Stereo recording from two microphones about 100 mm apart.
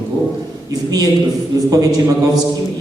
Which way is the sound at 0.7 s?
40° right (ahead or behind).